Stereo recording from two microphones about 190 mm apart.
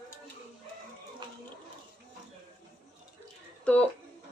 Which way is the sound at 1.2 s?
25° right (ahead or behind).